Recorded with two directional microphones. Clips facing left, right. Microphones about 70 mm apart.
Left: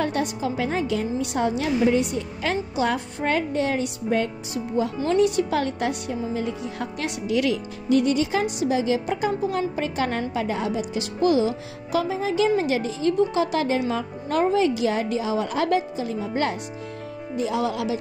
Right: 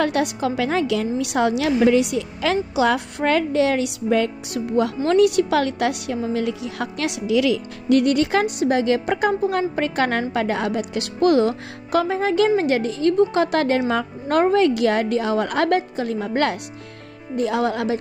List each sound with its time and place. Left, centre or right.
0.0 s a woman's voice: right
4.7 s a woman's voice: right
7.9 s a woman's voice: right
17.4 s a woman's voice: right